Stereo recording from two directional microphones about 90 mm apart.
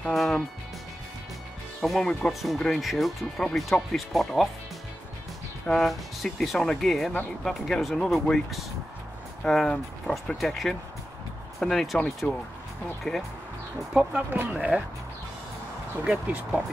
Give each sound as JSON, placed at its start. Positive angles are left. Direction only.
{"t": 0.1, "sound": "speech", "side_deg": 0}
{"t": 1.8, "sound": "speech", "side_deg": 5}
{"t": 5.7, "sound": "speech", "side_deg": 0}
{"t": 12.2, "sound": "speech", "side_deg": 15}
{"t": 13.0, "sound": "speech", "side_deg": 0}
{"t": 13.9, "sound": "speech", "side_deg": -15}
{"t": 16.0, "sound": "speech", "side_deg": -15}